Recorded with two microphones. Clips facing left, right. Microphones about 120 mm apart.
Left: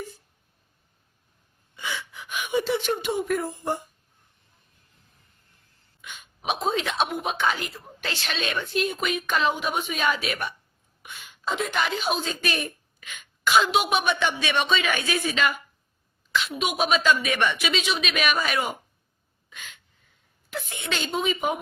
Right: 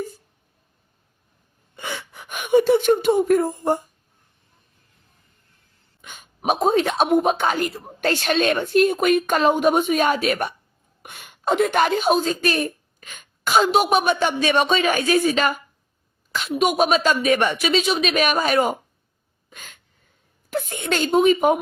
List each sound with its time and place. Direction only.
1.7 s gasp: 55° right (ahead or behind)
6.0 s speech: 45° right (ahead or behind)
19.5 s a sound: 45° right (ahead or behind)
20.5 s speech: 45° right (ahead or behind)